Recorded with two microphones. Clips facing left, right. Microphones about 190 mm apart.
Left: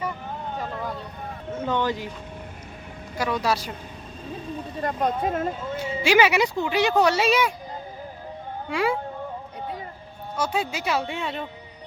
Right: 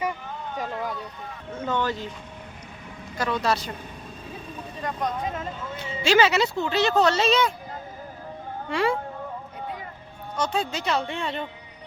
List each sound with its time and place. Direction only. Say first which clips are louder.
1.6 s speech: left 1 dB; 15° left (ahead or behind)
3.2 s speech: even; 10° left (ahead or behind)
4.8 s speech: left 4 dB; 50° left (ahead or behind)
5.7 s speech: even; 10° left (ahead or behind)
8.7 s speech: even; 5° left (ahead or behind)
10.3 s speech: even; 5° left (ahead or behind)